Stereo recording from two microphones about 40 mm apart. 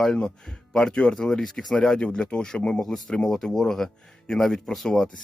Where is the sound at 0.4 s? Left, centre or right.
Centre.